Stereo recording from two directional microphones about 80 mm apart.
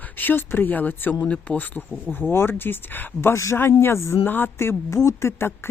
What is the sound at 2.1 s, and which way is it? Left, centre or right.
Speech, left.